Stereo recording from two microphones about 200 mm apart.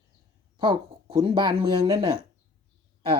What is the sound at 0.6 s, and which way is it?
A woman's voice, 25° right (ahead or behind).